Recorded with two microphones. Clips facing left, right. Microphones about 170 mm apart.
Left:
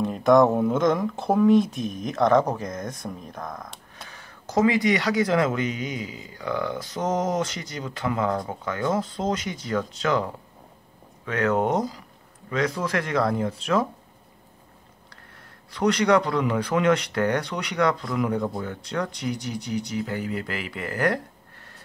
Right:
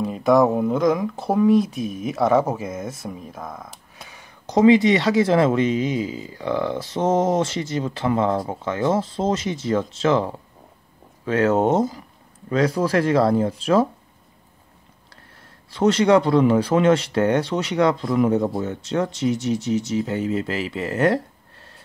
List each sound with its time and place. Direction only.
0.0 s speech: centre (ahead or behind); by 13.8 s 30° right (ahead or behind)
15.7 s speech: 30° right (ahead or behind)